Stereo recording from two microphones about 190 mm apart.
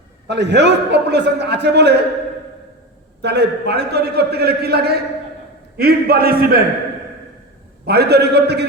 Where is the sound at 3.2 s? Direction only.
60° right (ahead or behind).